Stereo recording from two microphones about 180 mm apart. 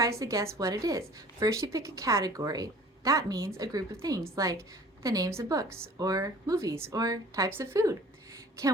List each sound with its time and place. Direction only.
0.0 s a woman's voice: 15° right (ahead or behind)